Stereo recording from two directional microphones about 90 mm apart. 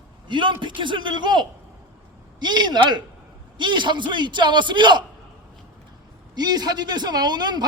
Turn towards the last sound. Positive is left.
turn(degrees=-50)  # may be behind; listen again after turning